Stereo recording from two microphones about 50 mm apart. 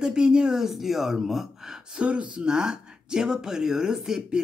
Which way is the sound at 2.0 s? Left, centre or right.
Right.